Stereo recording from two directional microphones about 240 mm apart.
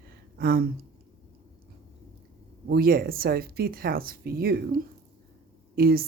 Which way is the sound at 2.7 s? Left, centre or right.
Right.